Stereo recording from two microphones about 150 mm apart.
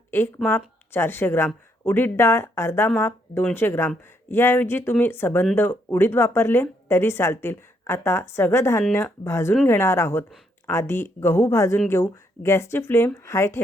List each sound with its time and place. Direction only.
0.1 s speech: 15° left (ahead or behind)